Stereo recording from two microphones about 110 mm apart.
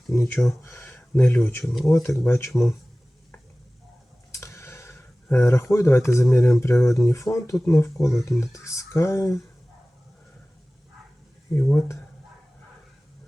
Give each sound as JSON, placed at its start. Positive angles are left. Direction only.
{"t": 0.1, "sound": "speech", "side_deg": 25}
{"t": 1.6, "sound": "speech", "side_deg": 0}
{"t": 2.0, "sound": "speech", "side_deg": 25}
{"t": 4.3, "sound": "a sound", "side_deg": 25}
{"t": 5.7, "sound": "speech", "side_deg": 25}
{"t": 11.5, "sound": "speech", "side_deg": 25}